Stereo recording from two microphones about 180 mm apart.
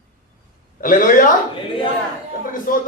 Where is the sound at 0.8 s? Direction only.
50° left (ahead or behind).